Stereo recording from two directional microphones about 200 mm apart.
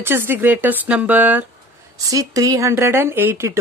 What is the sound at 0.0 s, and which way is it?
Speech, 10° right (ahead or behind).